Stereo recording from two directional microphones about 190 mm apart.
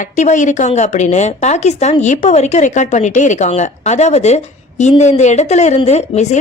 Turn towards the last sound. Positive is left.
turn(degrees=35)  # may be behind; listen again after turning